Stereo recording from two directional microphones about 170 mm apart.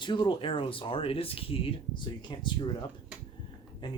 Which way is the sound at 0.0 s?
30° left (ahead or behind).